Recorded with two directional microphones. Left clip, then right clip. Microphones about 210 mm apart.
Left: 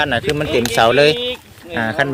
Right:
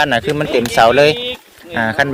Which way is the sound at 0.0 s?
30° right (ahead or behind).